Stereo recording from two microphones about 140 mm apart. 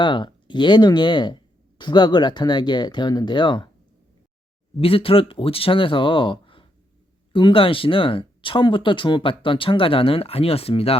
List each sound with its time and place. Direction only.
0.0 s speech: 35° left (ahead or behind)
4.8 s speech: 40° left (ahead or behind)